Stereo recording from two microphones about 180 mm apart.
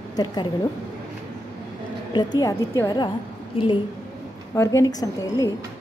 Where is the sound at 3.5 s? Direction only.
30° left (ahead or behind).